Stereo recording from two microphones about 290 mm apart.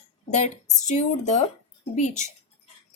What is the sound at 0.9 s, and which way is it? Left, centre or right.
A woman's voice, left.